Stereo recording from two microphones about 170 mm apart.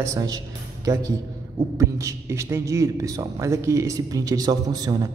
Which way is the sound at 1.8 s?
20° right (ahead or behind).